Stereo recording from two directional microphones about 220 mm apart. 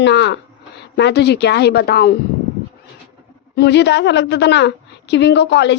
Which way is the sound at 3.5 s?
50° left (ahead or behind).